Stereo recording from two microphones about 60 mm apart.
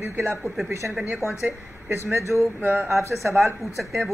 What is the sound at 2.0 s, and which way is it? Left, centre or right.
Speech, right.